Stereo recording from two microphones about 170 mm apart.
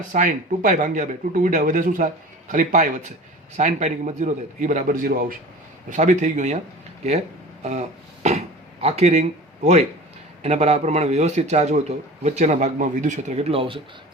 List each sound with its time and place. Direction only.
0.1 s speech: 45° right (ahead or behind)
7.6 s throat clearing: 40° right (ahead or behind)
8.8 s a man's voice: 35° right (ahead or behind)
10.4 s a man's voice: 35° right (ahead or behind)